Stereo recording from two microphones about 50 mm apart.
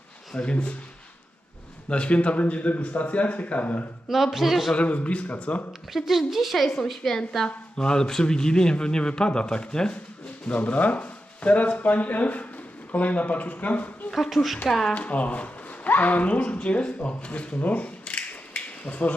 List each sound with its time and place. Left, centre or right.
0.3 s speech: left
1.9 s speech: left
4.1 s a man's voice: centre
4.7 s speech: left
5.9 s a woman's voice: centre; by 14.1 s left
14.1 s a man's voice: centre
14.9 s speech: left